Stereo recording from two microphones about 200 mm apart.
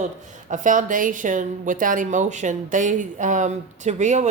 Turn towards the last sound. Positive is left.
turn(degrees=-35)  # may be behind; listen again after turning